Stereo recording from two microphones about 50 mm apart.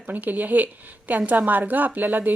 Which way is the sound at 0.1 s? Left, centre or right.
Right.